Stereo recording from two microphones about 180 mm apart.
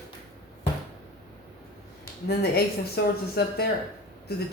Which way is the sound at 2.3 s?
60° left (ahead or behind).